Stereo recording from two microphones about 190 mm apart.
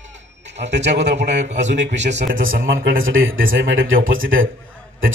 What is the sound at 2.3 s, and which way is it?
Speech, 90° right.